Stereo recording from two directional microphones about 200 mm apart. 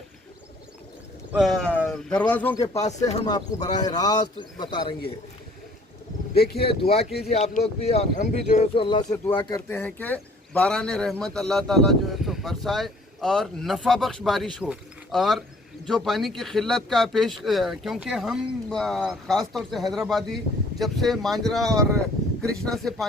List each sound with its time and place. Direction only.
1.3 s speech: centre (ahead or behind)
3.1 s speech: 25° left (ahead or behind)
6.3 s speech: 50° left (ahead or behind)
7.3 s speech: 30° left (ahead or behind)
9.6 s speech: 10° left (ahead or behind)